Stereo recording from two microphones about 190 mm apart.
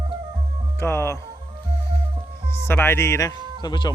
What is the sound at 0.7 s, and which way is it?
Music, 15° left (ahead or behind).